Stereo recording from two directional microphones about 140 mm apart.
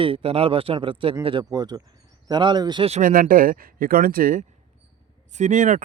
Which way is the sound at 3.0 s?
85° right.